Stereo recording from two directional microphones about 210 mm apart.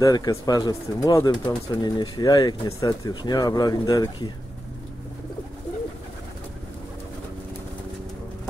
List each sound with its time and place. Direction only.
0.0 s speech: 15° left (ahead or behind)